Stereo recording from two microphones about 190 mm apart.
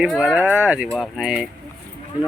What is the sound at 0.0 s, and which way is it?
Speech, 5° right (ahead or behind).